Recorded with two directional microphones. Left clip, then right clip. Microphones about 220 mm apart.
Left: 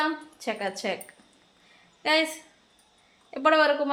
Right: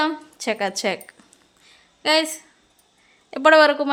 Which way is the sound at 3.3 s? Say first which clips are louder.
Right 7 dB; 50° right (ahead or behind).